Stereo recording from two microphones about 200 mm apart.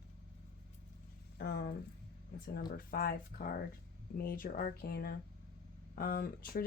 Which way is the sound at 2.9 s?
50° left (ahead or behind).